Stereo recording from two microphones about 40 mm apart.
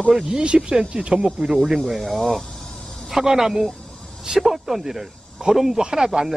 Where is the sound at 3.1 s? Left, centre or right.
Centre.